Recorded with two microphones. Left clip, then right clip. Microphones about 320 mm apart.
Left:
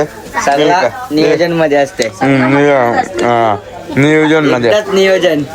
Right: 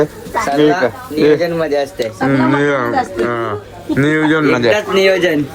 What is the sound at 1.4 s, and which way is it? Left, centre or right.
Speech, left.